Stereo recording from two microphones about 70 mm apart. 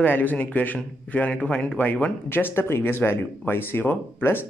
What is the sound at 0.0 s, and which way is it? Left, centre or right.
Speech, left.